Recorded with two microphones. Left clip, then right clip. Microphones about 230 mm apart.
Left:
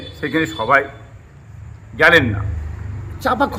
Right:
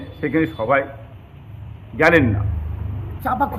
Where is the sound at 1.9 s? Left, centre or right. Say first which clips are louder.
Left 3 dB; centre.